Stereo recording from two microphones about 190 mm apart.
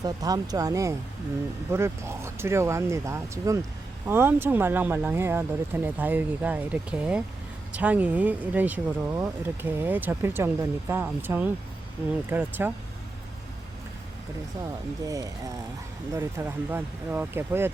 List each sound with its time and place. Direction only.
0.0 s speech: 20° right (ahead or behind)
15.0 s speech: 20° right (ahead or behind)